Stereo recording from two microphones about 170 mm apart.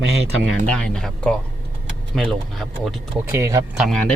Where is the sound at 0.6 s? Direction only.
5° left (ahead or behind).